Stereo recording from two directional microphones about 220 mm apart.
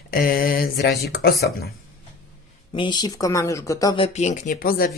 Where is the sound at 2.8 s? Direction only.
20° left (ahead or behind).